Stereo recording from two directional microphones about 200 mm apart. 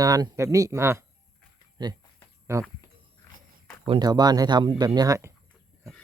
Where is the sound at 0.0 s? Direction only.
20° right (ahead or behind).